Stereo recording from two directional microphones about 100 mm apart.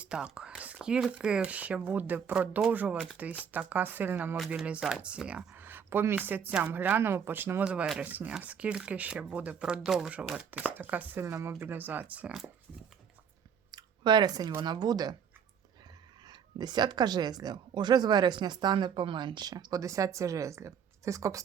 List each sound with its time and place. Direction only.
0.0 s speech: 10° right (ahead or behind)
4.4 s speech: centre (ahead or behind)
13.7 s a sound: 45° right (ahead or behind)
14.6 s speech: 45° right (ahead or behind)
16.2 s speech: 45° right (ahead or behind)